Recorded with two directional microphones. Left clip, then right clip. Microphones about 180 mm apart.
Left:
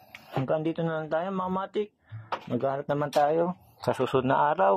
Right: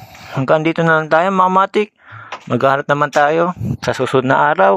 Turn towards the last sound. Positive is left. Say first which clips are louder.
# right 11 dB
turn(degrees=-20)  # may be behind; listen again after turning